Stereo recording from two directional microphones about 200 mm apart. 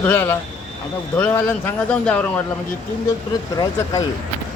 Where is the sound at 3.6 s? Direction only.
15° left (ahead or behind).